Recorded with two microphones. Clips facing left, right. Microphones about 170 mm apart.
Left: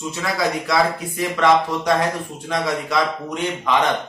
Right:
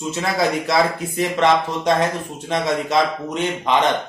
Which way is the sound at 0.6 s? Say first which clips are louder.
Right 1 dB; 25° right (ahead or behind).